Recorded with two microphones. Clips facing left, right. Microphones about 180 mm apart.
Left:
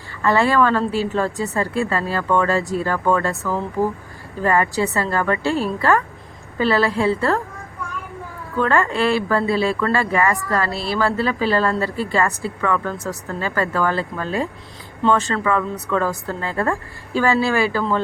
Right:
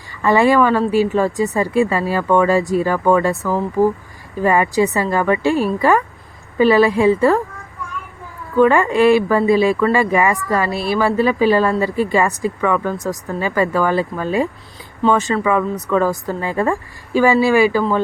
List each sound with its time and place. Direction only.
0.2 s speech: 15° right (ahead or behind)
8.5 s speech: 15° right (ahead or behind)